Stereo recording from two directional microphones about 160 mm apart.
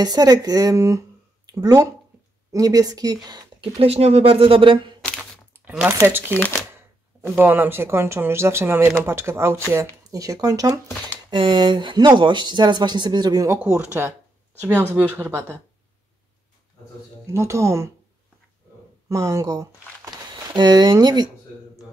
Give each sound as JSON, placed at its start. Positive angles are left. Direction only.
{"t": 0.0, "sound": "speech", "side_deg": -25}
{"t": 3.8, "sound": "speech", "side_deg": -40}
{"t": 5.5, "sound": "speech", "side_deg": -10}
{"t": 6.3, "sound": "speech", "side_deg": 10}
{"t": 7.2, "sound": "speech", "side_deg": -10}
{"t": 17.3, "sound": "speech", "side_deg": -15}
{"t": 19.0, "sound": "speech", "side_deg": -20}